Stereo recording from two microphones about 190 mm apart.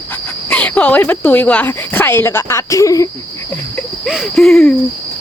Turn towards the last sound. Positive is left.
turn(degrees=0)  # may be behind; listen again after turning